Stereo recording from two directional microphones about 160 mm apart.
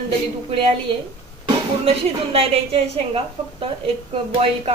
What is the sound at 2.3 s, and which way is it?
A woman's voice, 35° right (ahead or behind).